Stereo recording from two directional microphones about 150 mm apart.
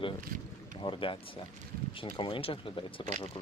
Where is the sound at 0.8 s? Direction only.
35° left (ahead or behind).